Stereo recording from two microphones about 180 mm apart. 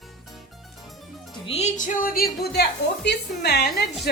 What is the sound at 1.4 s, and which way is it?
Music, 35° left (ahead or behind).